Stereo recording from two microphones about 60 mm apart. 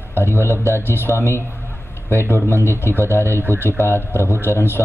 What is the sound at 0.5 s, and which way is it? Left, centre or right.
Speech, left.